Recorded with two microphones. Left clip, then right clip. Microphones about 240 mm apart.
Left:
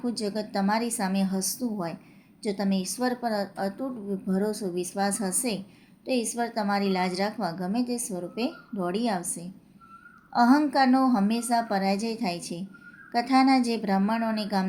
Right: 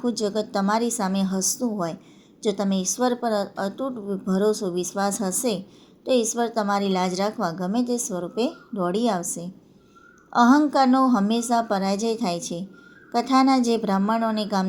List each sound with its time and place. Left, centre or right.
0.0 s a woman's voice: centre